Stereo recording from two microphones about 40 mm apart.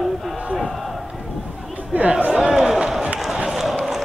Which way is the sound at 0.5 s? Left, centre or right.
Centre.